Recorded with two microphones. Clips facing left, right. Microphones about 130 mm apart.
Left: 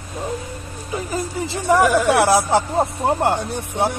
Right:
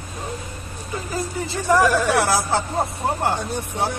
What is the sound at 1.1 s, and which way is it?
Speech, 20° left (ahead or behind).